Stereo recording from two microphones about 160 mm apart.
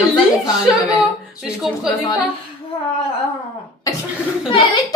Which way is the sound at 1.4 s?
Centre (ahead or behind).